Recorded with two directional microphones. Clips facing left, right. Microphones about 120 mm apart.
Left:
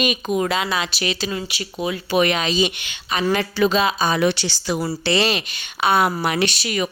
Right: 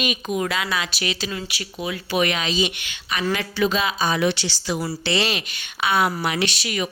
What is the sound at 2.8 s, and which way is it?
A woman's voice, 30° left (ahead or behind).